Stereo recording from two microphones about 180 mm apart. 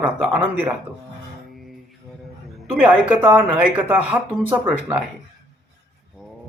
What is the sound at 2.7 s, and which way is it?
A man's voice, 10° right (ahead or behind).